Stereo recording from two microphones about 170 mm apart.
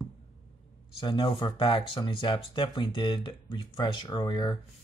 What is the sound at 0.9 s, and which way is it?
Speech, 30° left (ahead or behind).